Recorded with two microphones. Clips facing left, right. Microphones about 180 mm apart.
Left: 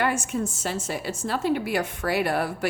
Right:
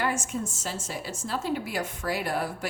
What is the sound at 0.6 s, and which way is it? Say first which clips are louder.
A woman's voice: left 5 dB; 65° left (ahead or behind).